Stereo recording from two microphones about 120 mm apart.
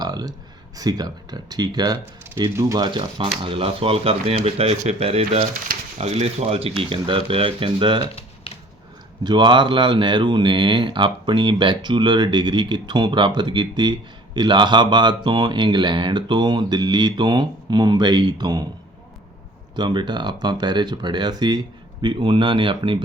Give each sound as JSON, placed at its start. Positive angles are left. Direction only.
{"t": 0.0, "sound": "a sound", "side_deg": -35}
{"t": 0.8, "sound": "speech", "side_deg": -35}
{"t": 9.2, "sound": "speech", "side_deg": -40}
{"t": 19.7, "sound": "speech", "side_deg": -35}